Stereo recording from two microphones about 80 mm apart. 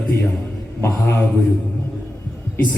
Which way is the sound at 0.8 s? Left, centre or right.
Left.